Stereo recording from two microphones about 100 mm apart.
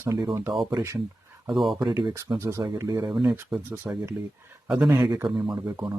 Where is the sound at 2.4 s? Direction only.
25° right (ahead or behind).